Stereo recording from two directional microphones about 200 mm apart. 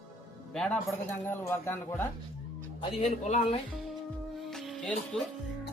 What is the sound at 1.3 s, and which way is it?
Speech, 10° left (ahead or behind).